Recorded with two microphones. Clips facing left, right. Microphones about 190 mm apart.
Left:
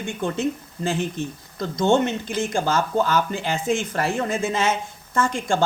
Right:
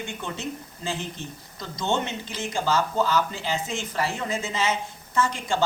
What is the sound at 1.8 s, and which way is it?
Speech, 50° left (ahead or behind).